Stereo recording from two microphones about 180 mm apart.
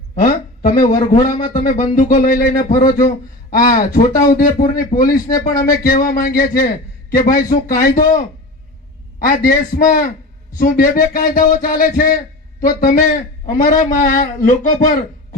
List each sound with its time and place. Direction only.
0.2 s a man's voice: 50° left (ahead or behind)
9.2 s a man's voice: 50° left (ahead or behind)
14.8 s a sound: 50° left (ahead or behind)